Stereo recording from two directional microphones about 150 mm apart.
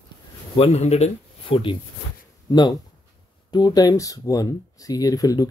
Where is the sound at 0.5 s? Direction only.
45° left (ahead or behind).